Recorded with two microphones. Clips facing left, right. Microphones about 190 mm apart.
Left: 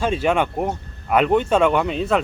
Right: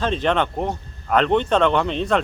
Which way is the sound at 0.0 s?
10° left (ahead or behind).